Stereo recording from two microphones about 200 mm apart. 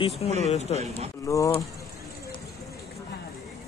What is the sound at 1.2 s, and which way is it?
Speech, 15° left (ahead or behind).